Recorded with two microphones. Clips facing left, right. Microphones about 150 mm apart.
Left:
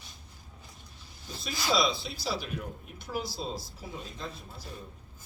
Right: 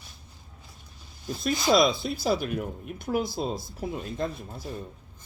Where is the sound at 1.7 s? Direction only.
50° right (ahead or behind).